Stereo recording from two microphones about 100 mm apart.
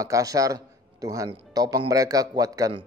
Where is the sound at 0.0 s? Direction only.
35° right (ahead or behind).